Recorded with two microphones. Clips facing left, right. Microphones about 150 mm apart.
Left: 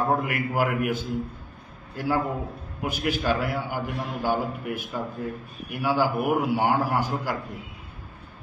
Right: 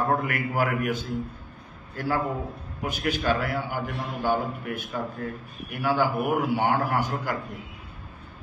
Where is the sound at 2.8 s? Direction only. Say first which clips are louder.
Left 1 dB; 5° left (ahead or behind).